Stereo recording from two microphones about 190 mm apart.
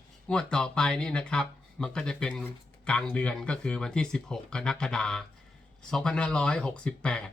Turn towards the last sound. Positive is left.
turn(degrees=5)  # may be behind; listen again after turning